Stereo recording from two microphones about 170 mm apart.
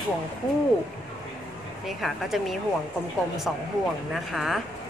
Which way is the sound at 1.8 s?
Centre (ahead or behind).